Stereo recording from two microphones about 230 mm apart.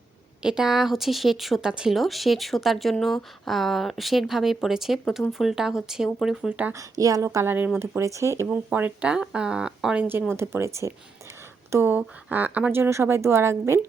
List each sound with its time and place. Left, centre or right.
0.4 s speech: centre